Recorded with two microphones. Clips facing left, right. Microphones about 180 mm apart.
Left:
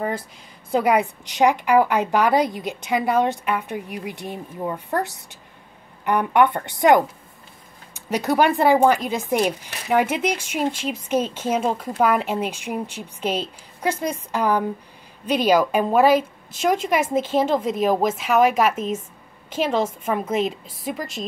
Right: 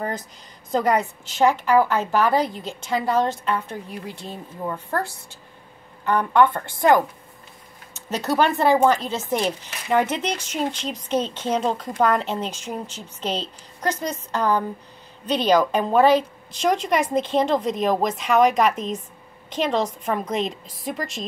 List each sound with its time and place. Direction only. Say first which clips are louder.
0.7 s a woman's voice: left 2 dB; 10° left (ahead or behind)